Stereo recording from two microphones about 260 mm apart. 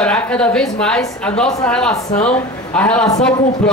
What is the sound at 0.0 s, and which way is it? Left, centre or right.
A man's voice, centre.